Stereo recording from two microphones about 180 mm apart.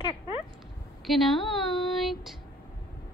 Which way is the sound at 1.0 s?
Centre (ahead or behind).